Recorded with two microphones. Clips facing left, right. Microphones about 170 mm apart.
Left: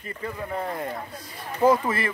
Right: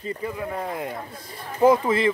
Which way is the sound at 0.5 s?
10° right (ahead or behind).